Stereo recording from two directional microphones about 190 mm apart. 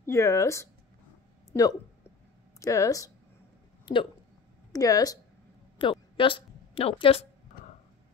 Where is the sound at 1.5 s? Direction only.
15° left (ahead or behind).